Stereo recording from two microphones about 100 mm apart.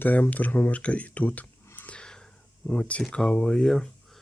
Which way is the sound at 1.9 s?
5° left (ahead or behind).